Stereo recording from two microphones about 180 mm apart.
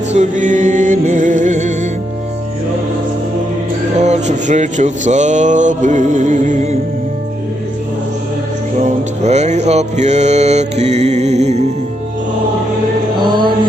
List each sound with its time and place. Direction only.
0.1 s music: 40° right (ahead or behind)
3.9 s a sound: 40° right (ahead or behind)
8.8 s mantra: 40° right (ahead or behind)
13.1 s mantra: 25° right (ahead or behind)